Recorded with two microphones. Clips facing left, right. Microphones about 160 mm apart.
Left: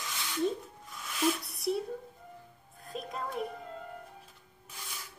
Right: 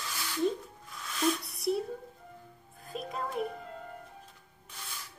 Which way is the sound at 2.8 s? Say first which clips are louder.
Right 1 dB; centre (ahead or behind).